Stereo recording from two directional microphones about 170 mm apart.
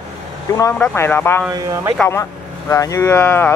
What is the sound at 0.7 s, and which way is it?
Speech, 10° left (ahead or behind).